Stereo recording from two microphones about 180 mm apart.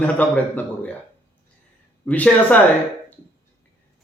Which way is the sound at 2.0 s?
10° left (ahead or behind).